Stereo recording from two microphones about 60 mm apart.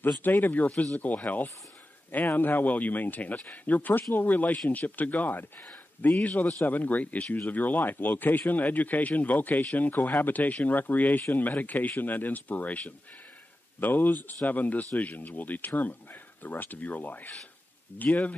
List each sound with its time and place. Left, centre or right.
0.2 s a man's voice: left
6.0 s a man's voice: centre